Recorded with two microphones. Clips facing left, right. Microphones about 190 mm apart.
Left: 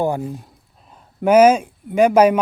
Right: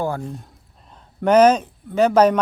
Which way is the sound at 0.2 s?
5° left (ahead or behind).